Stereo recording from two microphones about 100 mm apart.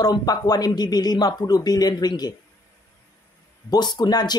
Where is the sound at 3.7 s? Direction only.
45° left (ahead or behind).